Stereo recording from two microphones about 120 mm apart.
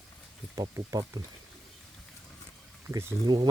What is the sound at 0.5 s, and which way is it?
Speech, 25° right (ahead or behind).